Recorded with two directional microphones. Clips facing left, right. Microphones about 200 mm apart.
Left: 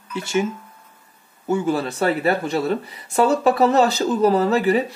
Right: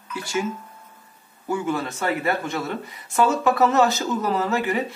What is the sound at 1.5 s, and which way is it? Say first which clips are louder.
Speech: left 4 dB; 30° left (ahead or behind).